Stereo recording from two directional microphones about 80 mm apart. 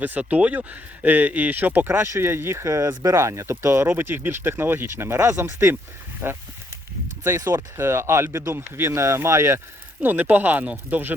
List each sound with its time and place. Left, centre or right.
0.0 s speech: centre
2.6 s speech: right
7.3 s speech: right
10.0 s speech: right